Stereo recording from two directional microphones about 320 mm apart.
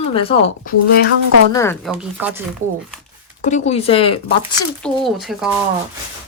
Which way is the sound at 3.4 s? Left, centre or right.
Left.